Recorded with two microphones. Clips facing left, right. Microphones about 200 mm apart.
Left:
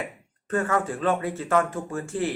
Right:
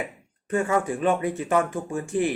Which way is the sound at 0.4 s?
15° right (ahead or behind).